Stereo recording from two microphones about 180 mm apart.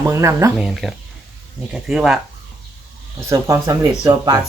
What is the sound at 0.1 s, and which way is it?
Speech, 15° right (ahead or behind).